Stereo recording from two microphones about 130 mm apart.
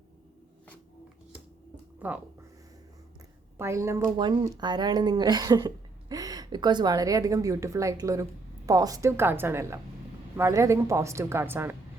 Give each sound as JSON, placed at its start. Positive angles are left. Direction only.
{"t": 2.0, "sound": "speech", "side_deg": -10}
{"t": 3.6, "sound": "a woman's voice", "side_deg": -20}
{"t": 4.4, "sound": "a woman's voice", "side_deg": -35}